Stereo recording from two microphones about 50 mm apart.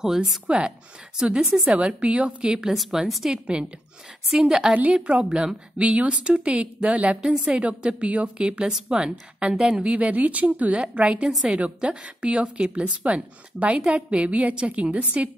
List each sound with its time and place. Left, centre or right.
0.0 s a woman's voice: centre
1.8 s a woman's voice: right
2.7 s a woman's voice: centre
3.3 s a woman's voice: centre
9.9 s a woman's voice: right